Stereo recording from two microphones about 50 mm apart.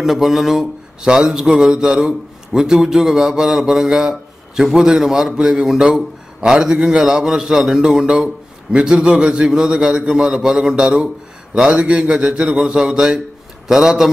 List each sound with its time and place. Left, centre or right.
0.0 s a man's voice: centre